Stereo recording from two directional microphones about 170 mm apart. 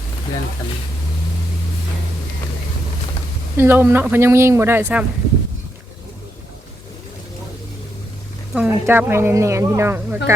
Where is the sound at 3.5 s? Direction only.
15° right (ahead or behind).